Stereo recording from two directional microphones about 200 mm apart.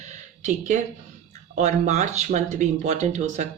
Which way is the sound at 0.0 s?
35° right (ahead or behind).